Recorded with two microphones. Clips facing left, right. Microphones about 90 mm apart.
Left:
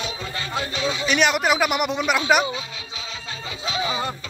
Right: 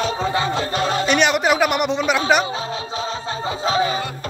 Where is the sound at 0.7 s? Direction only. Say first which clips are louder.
Right 5 dB; 50° right (ahead or behind).